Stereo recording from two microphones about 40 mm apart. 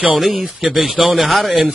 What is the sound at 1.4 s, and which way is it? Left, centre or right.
Speech, centre.